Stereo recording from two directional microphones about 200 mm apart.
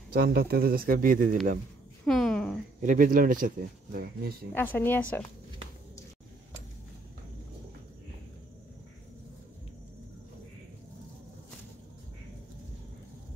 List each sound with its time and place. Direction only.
0.1 s speech: 50° right (ahead or behind)
2.0 s a woman's voice: centre (ahead or behind)
2.8 s speech: 40° right (ahead or behind)
4.6 s a woman's voice: 10° left (ahead or behind)